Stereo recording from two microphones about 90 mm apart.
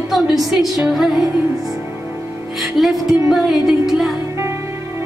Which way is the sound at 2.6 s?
5° right (ahead or behind).